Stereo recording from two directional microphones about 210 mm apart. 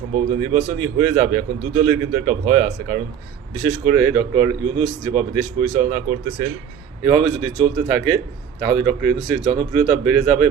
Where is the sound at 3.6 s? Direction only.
20° right (ahead or behind).